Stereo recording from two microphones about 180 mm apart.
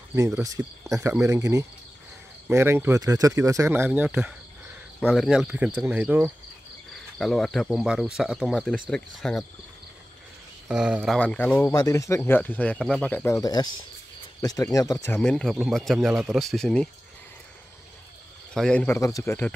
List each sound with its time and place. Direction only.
0.1 s speech: 20° right (ahead or behind)
7.2 s speech: centre (ahead or behind)
10.7 s speech: 5° right (ahead or behind)
11.1 s speech: 10° left (ahead or behind)
15.1 s speech: 5° left (ahead or behind)
18.5 s speech: 5° left (ahead or behind)
18.9 s speech: 15° left (ahead or behind)